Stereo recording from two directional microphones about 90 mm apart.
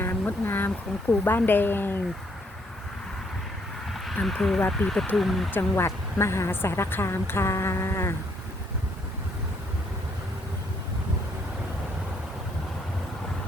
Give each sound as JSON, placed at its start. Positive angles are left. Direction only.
{"t": 0.0, "sound": "a sound", "side_deg": 25}
{"t": 1.2, "sound": "a woman's voice", "side_deg": 20}
{"t": 3.9, "sound": "speech", "side_deg": 5}
{"t": 5.5, "sound": "a woman's voice", "side_deg": 25}